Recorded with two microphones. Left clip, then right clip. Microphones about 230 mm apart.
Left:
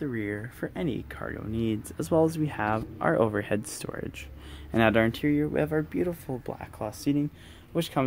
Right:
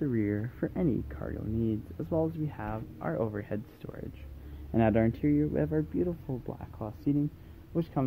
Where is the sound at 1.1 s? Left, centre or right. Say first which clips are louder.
Left 3 dB; centre.